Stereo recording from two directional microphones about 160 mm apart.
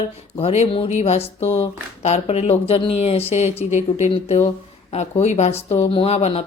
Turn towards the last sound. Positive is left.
turn(degrees=40)  # may be behind; listen again after turning